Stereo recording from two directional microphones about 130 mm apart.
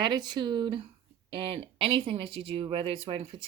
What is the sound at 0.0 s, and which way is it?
Speech, 35° right (ahead or behind).